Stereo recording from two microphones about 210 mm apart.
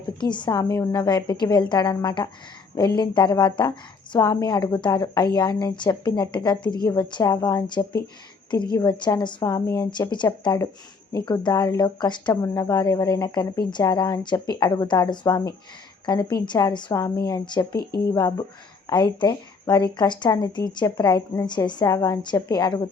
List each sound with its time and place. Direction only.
0.2 s speech: 20° left (ahead or behind)
17.7 s speech: 50° left (ahead or behind)
18.1 s speech: 15° left (ahead or behind)